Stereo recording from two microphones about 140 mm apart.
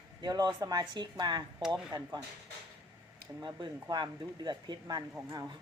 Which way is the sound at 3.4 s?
30° right (ahead or behind).